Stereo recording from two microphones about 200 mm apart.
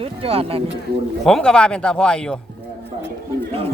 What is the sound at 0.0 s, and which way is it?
Speech, 30° right (ahead or behind).